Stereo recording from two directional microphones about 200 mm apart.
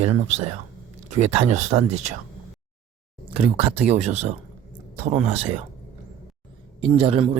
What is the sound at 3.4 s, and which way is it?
Speech, 30° right (ahead or behind).